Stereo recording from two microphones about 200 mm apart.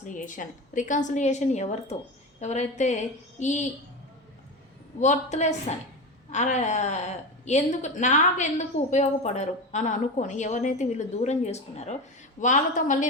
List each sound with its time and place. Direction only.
0.0 s a woman's voice: 40° left (ahead or behind)
4.9 s a woman's voice: 35° left (ahead or behind)